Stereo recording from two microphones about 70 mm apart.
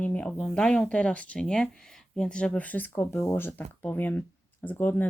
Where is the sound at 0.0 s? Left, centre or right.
Centre.